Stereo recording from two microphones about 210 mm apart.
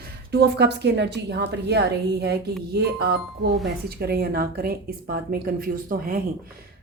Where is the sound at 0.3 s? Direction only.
50° right (ahead or behind).